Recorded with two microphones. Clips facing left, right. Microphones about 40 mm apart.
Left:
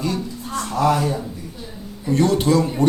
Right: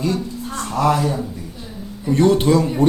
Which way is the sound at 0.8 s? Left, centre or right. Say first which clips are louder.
Right 1 dB; right.